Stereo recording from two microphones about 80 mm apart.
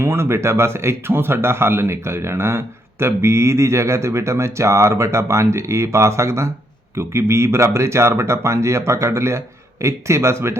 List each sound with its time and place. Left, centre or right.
0.0 s a man's voice: right